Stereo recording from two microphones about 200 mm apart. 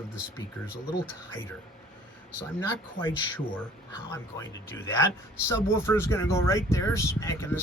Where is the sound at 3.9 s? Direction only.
15° left (ahead or behind).